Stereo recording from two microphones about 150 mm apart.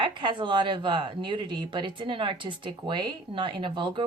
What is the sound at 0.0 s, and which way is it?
Speech, 30° right (ahead or behind).